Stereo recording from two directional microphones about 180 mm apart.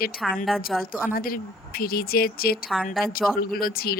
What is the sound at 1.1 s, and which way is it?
Speech, 55° left (ahead or behind).